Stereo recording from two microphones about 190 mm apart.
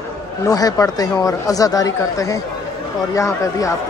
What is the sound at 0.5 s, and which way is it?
Speech, 20° left (ahead or behind).